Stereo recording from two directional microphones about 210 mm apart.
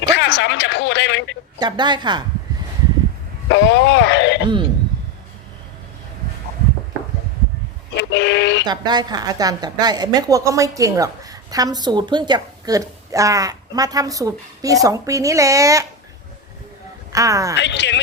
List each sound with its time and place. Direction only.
0.0 s speech: 55° left (ahead or behind)
1.5 s speech: 20° right (ahead or behind)
3.5 s speech: 55° left (ahead or behind)
7.9 s speech: 55° left (ahead or behind)
8.6 s a woman's voice: 20° right (ahead or behind)
17.1 s a woman's voice: 15° right (ahead or behind)
17.6 s speech: 55° left (ahead or behind)